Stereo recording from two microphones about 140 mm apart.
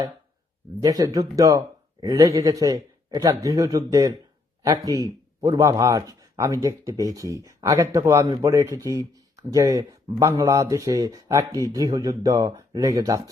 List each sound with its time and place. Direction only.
0.8 s speech: 25° right (ahead or behind)